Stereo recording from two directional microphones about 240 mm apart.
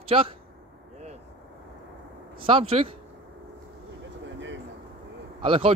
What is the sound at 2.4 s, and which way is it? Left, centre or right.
Speech, right.